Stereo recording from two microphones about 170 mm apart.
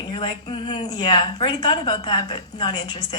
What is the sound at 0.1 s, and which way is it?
Speech, 30° left (ahead or behind).